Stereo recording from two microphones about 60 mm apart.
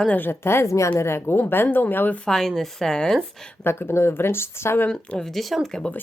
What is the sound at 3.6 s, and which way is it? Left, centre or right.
Speech, left.